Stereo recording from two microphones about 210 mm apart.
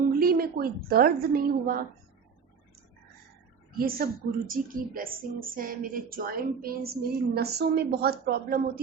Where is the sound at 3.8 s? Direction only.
45° right (ahead or behind).